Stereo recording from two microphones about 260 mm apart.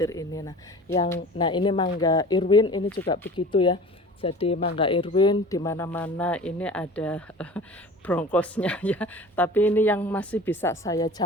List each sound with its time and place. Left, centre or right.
0.0 s speech: centre